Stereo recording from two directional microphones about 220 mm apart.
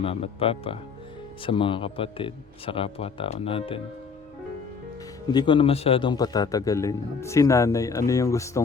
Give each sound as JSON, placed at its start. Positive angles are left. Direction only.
{"t": 0.0, "sound": "speech", "side_deg": 25}
{"t": 5.3, "sound": "a man's voice", "side_deg": 20}